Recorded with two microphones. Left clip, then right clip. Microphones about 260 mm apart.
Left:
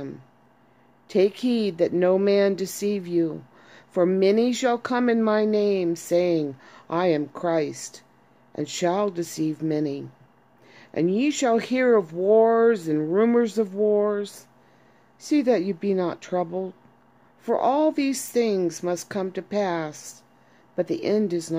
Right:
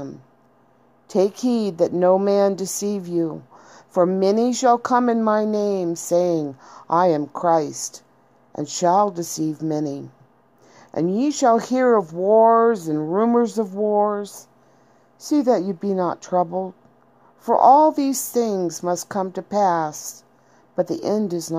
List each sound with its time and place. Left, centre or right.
1.0 s a woman's voice: centre
3.5 s a sound: centre
4.2 s a woman's voice: centre
11.0 s a woman's voice: centre
11.8 s speech: centre
12.2 s a woman's voice: centre
15.6 s a woman's voice: centre
17.4 s a woman's voice: centre
17.6 s a woman's voice: centre
18.7 s speech: centre
19.1 s a woman's voice: centre
19.5 s speech: centre
20.8 s a woman's voice: centre